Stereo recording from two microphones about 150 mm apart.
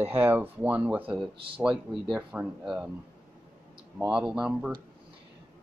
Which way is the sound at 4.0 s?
5° right (ahead or behind).